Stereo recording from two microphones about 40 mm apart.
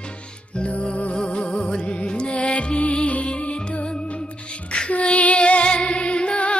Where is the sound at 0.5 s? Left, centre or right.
Left.